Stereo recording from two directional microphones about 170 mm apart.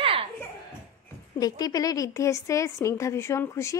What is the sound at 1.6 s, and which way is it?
A woman's voice, 20° left (ahead or behind).